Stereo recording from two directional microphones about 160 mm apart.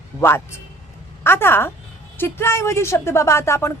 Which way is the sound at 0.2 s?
15° left (ahead or behind).